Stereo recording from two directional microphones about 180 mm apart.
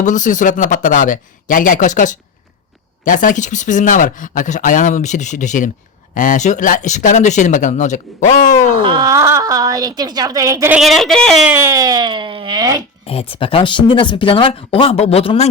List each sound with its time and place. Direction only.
0.0 s speech: 45° left (ahead or behind)
8.8 s a woman's voice: 25° right (ahead or behind)
10.7 s speech: centre (ahead or behind)
11.5 s speech: 15° right (ahead or behind)
13.1 s speech: 30° left (ahead or behind)